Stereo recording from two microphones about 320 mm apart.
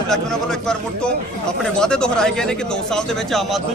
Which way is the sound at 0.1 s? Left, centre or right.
Centre.